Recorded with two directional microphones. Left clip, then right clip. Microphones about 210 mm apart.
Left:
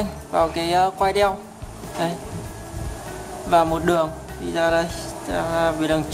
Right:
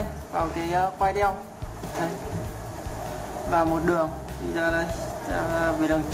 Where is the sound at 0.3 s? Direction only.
40° left (ahead or behind).